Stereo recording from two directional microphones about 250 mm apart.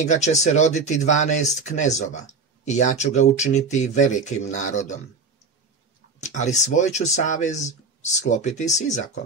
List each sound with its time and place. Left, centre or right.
0.0 s speech: left
6.2 s speech: left